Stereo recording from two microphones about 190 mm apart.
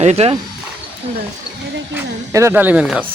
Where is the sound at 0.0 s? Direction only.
35° right (ahead or behind).